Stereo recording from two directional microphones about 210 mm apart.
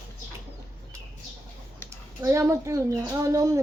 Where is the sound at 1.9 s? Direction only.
15° right (ahead or behind).